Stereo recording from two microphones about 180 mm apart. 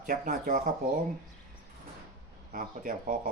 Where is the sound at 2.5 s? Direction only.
50° right (ahead or behind).